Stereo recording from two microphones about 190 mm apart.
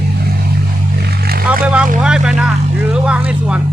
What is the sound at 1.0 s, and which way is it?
Vehicle, 55° right (ahead or behind).